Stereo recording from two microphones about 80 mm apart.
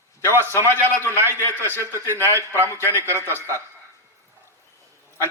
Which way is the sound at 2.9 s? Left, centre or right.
Right.